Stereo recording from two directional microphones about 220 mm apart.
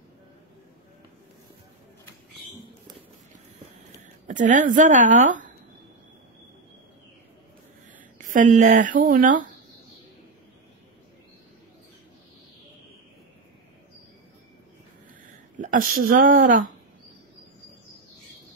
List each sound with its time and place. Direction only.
4.3 s a woman's voice: 35° right (ahead or behind)
8.2 s a woman's voice: 35° right (ahead or behind)
15.6 s a woman's voice: 40° right (ahead or behind)